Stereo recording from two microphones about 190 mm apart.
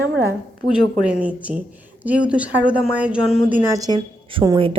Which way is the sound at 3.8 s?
20° right (ahead or behind).